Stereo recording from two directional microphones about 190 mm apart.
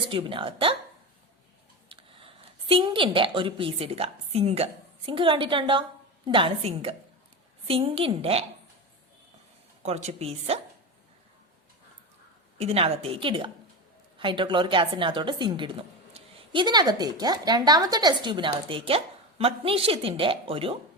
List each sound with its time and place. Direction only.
0.1 s speech: 25° right (ahead or behind)
1.9 s a woman's voice: 30° right (ahead or behind)
9.8 s a woman's voice: 35° right (ahead or behind)
12.5 s speech: 30° right (ahead or behind)